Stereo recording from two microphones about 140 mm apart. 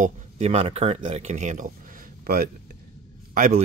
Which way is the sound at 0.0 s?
50° right (ahead or behind).